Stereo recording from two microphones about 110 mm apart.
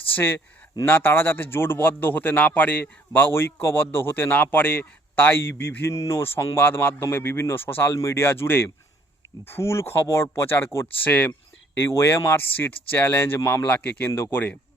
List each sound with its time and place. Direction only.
0.2 s a man's voice: 20° left (ahead or behind)